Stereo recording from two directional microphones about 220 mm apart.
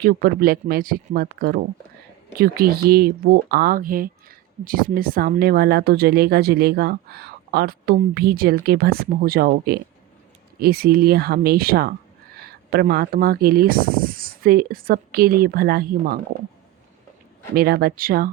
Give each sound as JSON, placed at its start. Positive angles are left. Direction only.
{"t": 0.0, "sound": "speech", "side_deg": -45}
{"t": 17.5, "sound": "speech", "side_deg": -45}